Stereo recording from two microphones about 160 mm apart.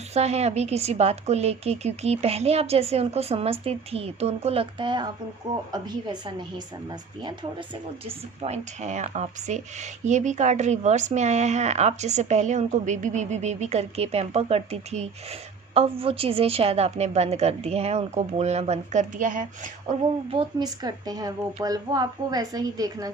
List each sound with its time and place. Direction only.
0.1 s a woman's voice: 40° right (ahead or behind); by 6.3 s 25° right (ahead or behind)
8.0 s speech: 40° right (ahead or behind)
20.3 s a woman's voice: 30° right (ahead or behind)